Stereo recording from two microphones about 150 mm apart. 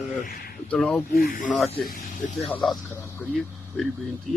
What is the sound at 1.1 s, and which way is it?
Speech, 85° left.